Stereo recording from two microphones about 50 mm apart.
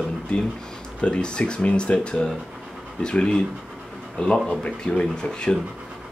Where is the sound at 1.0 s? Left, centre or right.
Centre.